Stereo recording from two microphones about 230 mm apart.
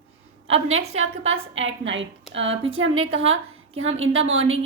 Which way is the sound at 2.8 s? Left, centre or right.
Right.